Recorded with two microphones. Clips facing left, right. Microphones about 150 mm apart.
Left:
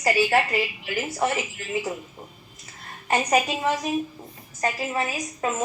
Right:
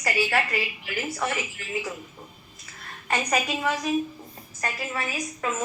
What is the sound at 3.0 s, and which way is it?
A woman's voice, 25° left (ahead or behind).